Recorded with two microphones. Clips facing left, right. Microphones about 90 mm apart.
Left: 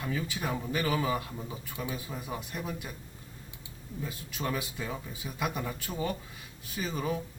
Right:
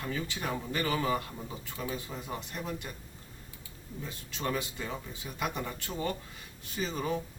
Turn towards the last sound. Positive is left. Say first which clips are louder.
# even
turn(degrees=0)  # may be behind; listen again after turning